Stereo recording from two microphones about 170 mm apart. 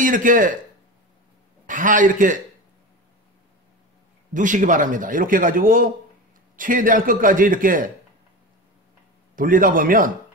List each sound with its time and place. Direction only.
0.0 s speech: 50° right (ahead or behind)
1.7 s speech: 50° right (ahead or behind)
4.3 s speech: 50° right (ahead or behind)
9.3 s a man's voice: 55° right (ahead or behind)